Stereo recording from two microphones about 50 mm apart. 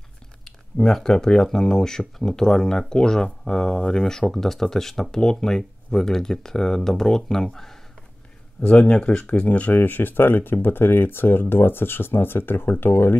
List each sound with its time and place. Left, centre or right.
0.5 s speech: centre
8.6 s speech: left